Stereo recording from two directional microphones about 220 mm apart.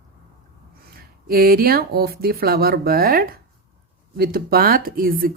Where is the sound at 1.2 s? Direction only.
40° right (ahead or behind).